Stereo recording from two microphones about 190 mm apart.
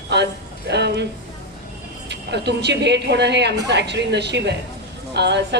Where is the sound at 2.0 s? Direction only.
65° right (ahead or behind).